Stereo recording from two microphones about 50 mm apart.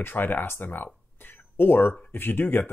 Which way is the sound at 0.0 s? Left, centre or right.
Left.